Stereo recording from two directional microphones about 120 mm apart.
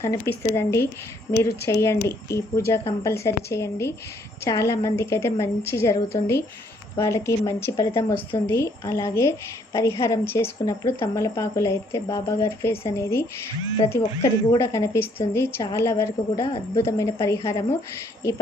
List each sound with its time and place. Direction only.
0.0 s a woman's voice: 20° left (ahead or behind)